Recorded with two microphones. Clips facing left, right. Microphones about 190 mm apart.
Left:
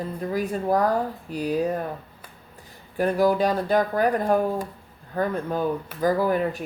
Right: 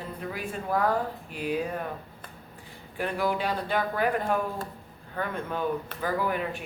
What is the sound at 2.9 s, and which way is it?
A woman's voice, 40° left (ahead or behind).